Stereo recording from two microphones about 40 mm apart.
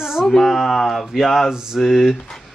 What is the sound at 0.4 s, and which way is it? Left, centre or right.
Speech, centre.